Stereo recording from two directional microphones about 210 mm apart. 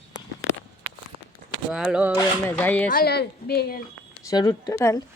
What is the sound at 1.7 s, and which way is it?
Speech, 5° right (ahead or behind).